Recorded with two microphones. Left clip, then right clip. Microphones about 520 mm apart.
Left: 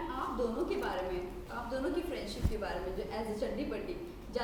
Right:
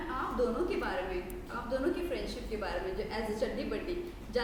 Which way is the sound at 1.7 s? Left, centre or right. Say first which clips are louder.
Right 4 dB; right.